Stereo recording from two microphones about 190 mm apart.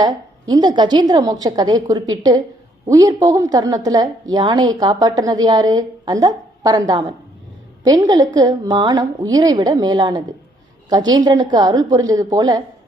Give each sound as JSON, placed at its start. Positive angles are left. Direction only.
{"t": 0.0, "sound": "a woman's voice", "side_deg": -20}